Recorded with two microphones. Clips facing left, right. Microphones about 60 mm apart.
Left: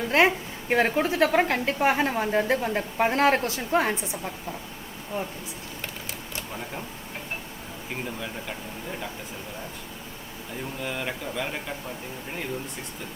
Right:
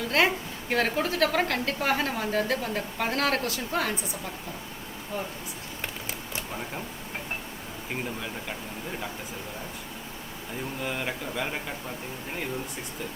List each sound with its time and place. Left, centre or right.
0.1 s a woman's voice: left
10.8 s speech: centre